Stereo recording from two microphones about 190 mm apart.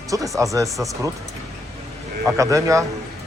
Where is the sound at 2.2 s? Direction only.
15° right (ahead or behind).